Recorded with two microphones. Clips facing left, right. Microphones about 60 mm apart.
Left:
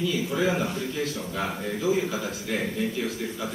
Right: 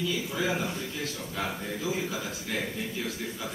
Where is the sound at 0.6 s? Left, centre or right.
Left.